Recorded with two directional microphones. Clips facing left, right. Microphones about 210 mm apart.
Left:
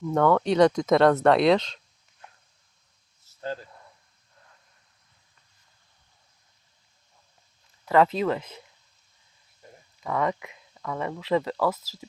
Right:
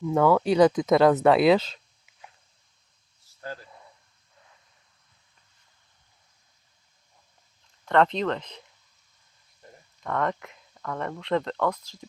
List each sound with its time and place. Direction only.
0.0 s speech: 5° right (ahead or behind)
3.3 s a sound: 20° left (ahead or behind)
7.9 s speech: 5° left (ahead or behind)
10.0 s speech: centre (ahead or behind)